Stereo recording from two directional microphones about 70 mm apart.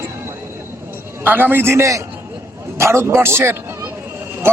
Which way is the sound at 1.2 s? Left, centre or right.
Right.